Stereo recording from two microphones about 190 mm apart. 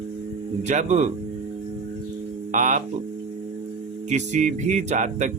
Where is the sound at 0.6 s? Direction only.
40° right (ahead or behind).